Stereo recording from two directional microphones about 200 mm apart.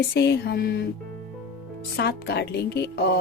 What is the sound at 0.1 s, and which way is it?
Speech, 55° left (ahead or behind).